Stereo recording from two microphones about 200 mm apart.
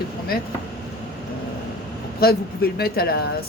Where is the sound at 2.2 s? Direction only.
50° left (ahead or behind).